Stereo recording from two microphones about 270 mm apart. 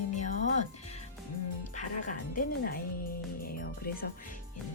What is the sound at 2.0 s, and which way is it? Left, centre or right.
Speech, left.